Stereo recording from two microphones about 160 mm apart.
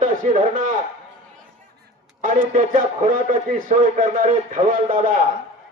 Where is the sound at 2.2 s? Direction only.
55° right (ahead or behind).